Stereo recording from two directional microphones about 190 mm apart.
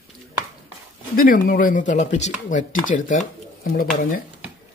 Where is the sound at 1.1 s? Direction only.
50° left (ahead or behind).